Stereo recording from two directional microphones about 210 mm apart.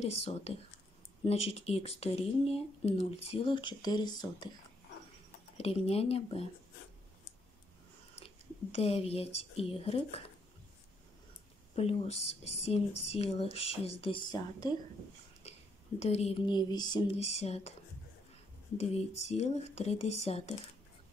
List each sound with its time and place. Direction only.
0.0 s speech: 30° left (ahead or behind)
5.6 s speech: 30° left (ahead or behind)
8.7 s speech: 30° left (ahead or behind)
11.7 s speech: 30° left (ahead or behind)
16.0 s speech: 30° left (ahead or behind)
18.8 s speech: 30° left (ahead or behind)